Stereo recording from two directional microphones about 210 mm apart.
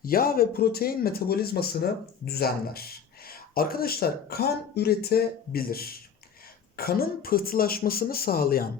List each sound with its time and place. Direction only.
0.0 s speech: 45° left (ahead or behind)